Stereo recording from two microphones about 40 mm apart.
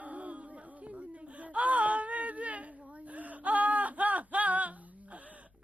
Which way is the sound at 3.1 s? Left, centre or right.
Right.